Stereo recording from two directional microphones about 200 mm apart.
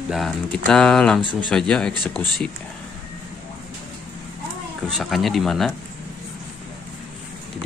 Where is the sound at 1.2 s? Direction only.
25° right (ahead or behind).